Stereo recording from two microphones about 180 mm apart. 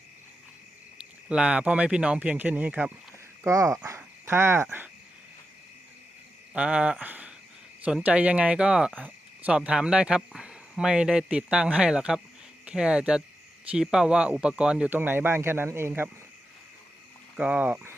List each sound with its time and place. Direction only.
0.9 s speech: 5° right (ahead or behind)
3.8 s dog: 15° right (ahead or behind)
6.5 s speech: 5° right (ahead or behind)
17.3 s speech: 5° right (ahead or behind)